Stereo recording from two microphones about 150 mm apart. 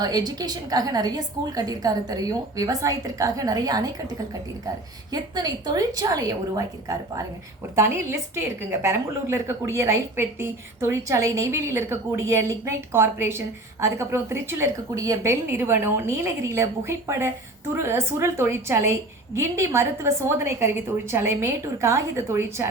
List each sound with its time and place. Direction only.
0.0 s a woman's voice: 25° right (ahead or behind)
5.1 s a woman's voice: 25° right (ahead or behind)